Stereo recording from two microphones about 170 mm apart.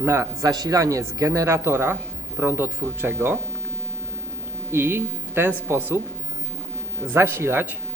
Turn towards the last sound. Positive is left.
turn(degrees=-10)  # may be behind; listen again after turning